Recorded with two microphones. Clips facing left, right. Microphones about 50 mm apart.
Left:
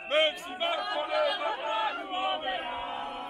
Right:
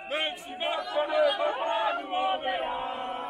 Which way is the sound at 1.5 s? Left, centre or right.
Right.